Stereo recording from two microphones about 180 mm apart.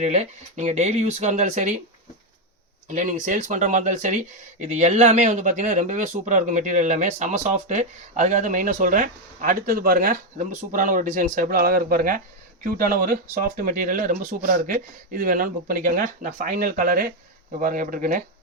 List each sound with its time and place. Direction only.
0.0 s speech: 40° right (ahead or behind)
2.9 s speech: 45° right (ahead or behind)